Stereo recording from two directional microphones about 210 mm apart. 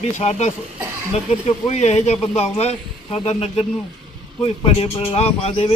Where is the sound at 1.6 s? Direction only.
30° left (ahead or behind).